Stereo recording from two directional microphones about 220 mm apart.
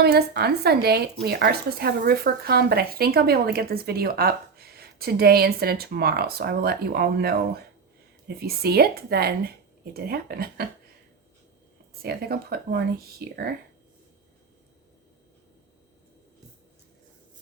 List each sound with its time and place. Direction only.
0.0 s speech: 45° right (ahead or behind)
12.0 s speech: 45° right (ahead or behind)